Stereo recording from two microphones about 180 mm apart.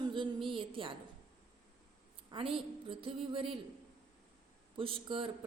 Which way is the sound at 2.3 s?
30° right (ahead or behind).